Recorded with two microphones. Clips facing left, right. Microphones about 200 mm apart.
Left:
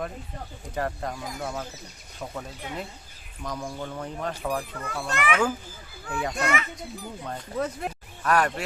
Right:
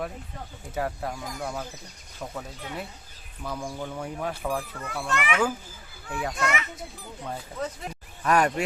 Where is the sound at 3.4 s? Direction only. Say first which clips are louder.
Even; 10° right (ahead or behind).